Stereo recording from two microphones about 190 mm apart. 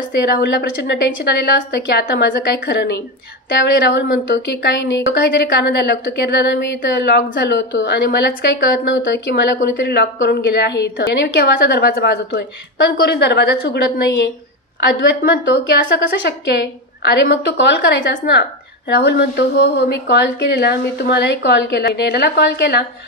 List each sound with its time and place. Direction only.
0.1 s a woman's voice: 60° left (ahead or behind)
8.9 s a woman's voice: 70° left (ahead or behind)